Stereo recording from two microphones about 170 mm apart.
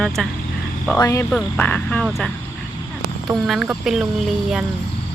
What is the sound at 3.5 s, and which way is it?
Speech, centre (ahead or behind).